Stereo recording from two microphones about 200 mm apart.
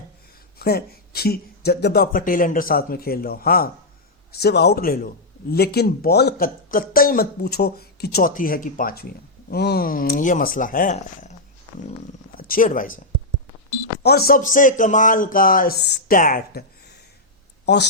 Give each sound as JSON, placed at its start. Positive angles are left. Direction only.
{"t": 0.6, "sound": "speech", "side_deg": 50}
{"t": 12.4, "sound": "speech", "side_deg": 45}
{"t": 14.0, "sound": "speech", "side_deg": 50}